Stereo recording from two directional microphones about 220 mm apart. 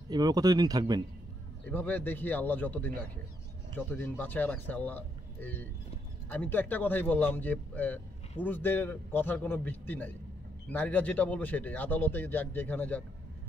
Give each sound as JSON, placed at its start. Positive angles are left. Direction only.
{"t": 0.1, "sound": "speech", "side_deg": -20}
{"t": 1.7, "sound": "speech", "side_deg": 10}